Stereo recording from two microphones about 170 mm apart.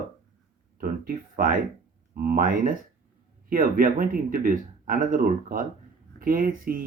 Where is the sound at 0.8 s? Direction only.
55° right (ahead or behind).